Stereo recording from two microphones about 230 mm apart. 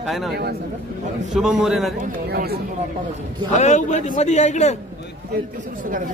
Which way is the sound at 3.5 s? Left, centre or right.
Left.